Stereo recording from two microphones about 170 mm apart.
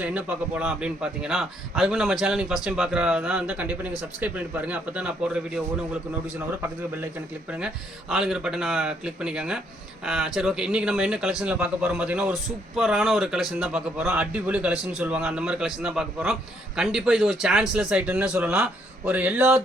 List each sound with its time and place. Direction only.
0.0 s speech: 10° right (ahead or behind)
8.1 s speech: 5° right (ahead or behind)